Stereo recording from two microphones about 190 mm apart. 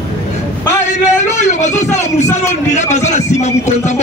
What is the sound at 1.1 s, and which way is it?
A man's voice, 40° left (ahead or behind).